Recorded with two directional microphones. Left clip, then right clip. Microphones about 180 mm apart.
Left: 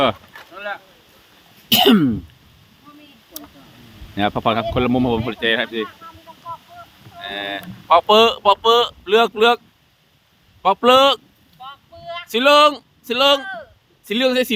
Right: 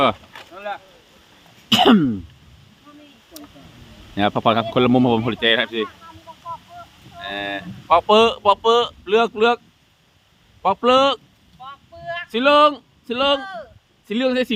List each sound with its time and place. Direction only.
0.5 s rowboat: 35° left (ahead or behind)
1.7 s throat clearing: 25° left (ahead or behind)
4.1 s speech: 5° right (ahead or behind); by 5.9 s 20° right (ahead or behind)
7.2 s a sound: centre (ahead or behind)
7.9 s speech: 15° left (ahead or behind)
10.6 s speech: 30° left (ahead or behind)
11.6 s a sound: 5° left (ahead or behind)
12.3 s speech: 35° left (ahead or behind)
13.4 s speech: 10° left (ahead or behind)
14.1 s speech: 35° left (ahead or behind)